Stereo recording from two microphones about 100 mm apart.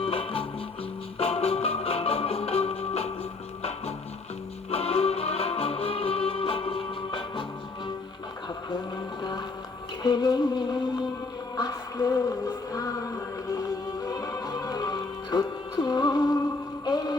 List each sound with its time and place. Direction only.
0.0 s music: 70° left (ahead or behind)
1.2 s music: 90° left; by 7.4 s 55° left (ahead or behind)
10.0 s music: 45° left (ahead or behind)